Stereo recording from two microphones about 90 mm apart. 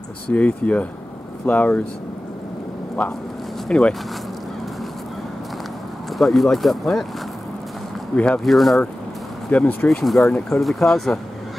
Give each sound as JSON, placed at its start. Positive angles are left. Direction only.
{"t": 0.3, "sound": "speech", "side_deg": 15}
{"t": 3.6, "sound": "speech", "side_deg": 10}
{"t": 6.1, "sound": "speech", "side_deg": 0}
{"t": 8.1, "sound": "speech", "side_deg": 5}
{"t": 9.5, "sound": "speech", "side_deg": 15}
{"t": 9.8, "sound": "speech", "side_deg": 0}